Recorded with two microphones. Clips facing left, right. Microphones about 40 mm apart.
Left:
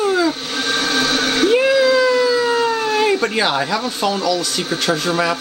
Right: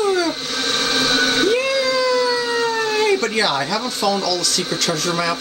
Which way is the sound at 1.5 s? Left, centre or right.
Centre.